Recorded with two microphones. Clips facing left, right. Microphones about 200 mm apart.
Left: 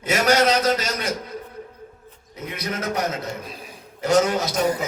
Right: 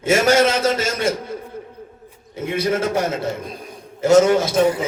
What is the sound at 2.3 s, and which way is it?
A man's voice, 30° right (ahead or behind).